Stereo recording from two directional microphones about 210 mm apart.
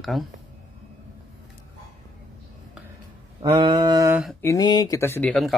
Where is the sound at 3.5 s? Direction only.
20° right (ahead or behind).